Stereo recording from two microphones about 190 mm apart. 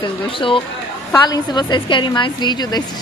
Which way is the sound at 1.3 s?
25° left (ahead or behind).